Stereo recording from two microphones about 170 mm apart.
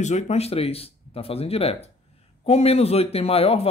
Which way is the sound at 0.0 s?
45° left (ahead or behind).